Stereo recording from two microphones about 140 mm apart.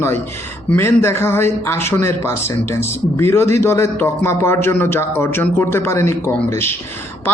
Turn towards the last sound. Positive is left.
turn(degrees=15)  # may be behind; listen again after turning